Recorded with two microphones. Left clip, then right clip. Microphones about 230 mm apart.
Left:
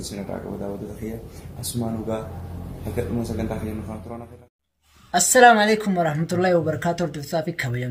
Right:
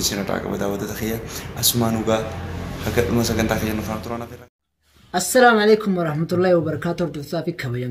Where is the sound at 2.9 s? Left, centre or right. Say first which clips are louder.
Right 8 dB; centre.